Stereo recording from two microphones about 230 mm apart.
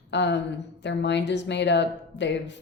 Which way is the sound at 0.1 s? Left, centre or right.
Left.